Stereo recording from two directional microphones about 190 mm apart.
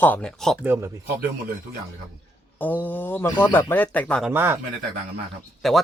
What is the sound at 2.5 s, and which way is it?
Speech, 10° left (ahead or behind).